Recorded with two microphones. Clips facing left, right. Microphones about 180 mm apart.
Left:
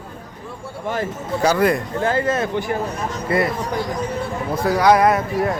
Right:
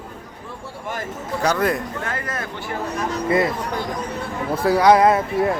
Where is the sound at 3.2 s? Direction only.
20° right (ahead or behind).